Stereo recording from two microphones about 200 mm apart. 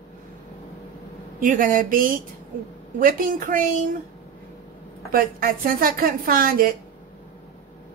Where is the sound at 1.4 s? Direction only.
45° right (ahead or behind).